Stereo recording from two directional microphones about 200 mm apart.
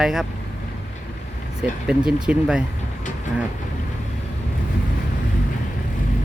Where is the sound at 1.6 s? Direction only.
5° right (ahead or behind).